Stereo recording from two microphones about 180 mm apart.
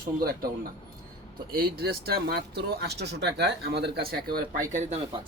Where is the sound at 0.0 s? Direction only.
55° right (ahead or behind).